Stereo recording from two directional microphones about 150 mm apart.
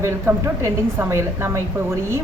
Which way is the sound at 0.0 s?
20° right (ahead or behind).